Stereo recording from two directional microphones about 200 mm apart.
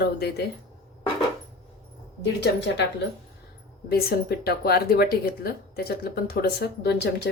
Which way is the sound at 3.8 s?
50° left (ahead or behind).